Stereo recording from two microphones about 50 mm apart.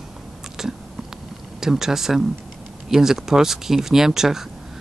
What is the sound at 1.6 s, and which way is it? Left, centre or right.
Speech, centre.